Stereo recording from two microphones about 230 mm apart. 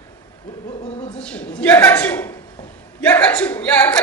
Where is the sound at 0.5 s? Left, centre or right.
Left.